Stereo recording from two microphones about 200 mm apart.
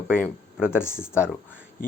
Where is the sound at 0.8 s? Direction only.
10° left (ahead or behind).